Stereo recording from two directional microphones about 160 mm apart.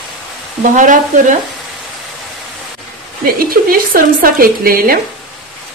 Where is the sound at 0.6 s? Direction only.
50° right (ahead or behind).